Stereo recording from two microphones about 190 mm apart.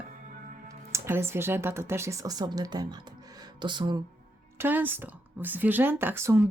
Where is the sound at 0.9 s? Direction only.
15° right (ahead or behind).